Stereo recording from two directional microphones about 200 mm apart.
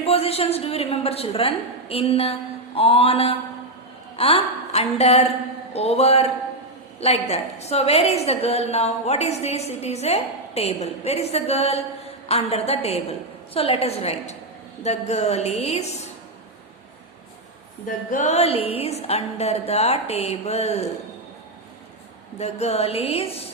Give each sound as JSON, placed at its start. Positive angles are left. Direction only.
{"t": 0.0, "sound": "a woman's voice", "side_deg": 30}
{"t": 17.8, "sound": "a woman's voice", "side_deg": 40}
{"t": 22.4, "sound": "a woman's voice", "side_deg": 35}